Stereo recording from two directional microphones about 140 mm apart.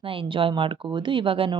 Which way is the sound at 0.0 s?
40° right (ahead or behind).